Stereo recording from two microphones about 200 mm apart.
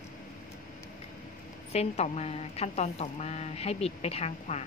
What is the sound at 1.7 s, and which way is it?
A woman's voice, 35° left (ahead or behind).